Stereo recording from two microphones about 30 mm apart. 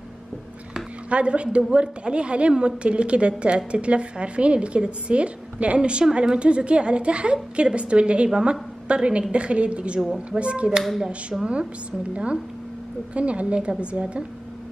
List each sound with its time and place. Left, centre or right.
1.1 s a woman's voice: right
12.1 s a woman's voice: right